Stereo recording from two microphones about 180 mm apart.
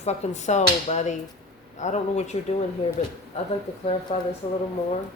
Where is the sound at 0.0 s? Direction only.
40° left (ahead or behind).